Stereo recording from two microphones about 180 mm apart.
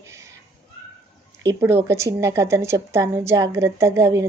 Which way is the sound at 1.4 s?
15° right (ahead or behind).